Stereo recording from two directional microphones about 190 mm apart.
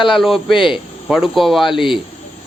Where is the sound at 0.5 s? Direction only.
25° left (ahead or behind).